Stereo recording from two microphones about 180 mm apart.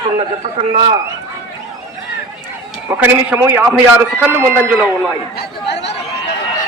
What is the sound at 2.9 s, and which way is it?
A man's voice, 10° right (ahead or behind).